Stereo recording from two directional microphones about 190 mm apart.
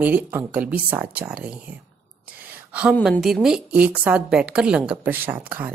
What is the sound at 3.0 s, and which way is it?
A woman's voice, centre (ahead or behind).